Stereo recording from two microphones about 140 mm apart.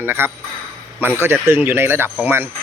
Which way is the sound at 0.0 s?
15° right (ahead or behind).